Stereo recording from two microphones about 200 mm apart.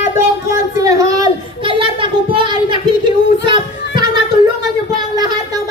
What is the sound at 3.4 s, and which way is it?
Children playing, 25° right (ahead or behind).